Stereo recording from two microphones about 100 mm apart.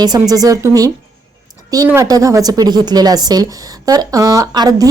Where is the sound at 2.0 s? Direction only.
35° right (ahead or behind).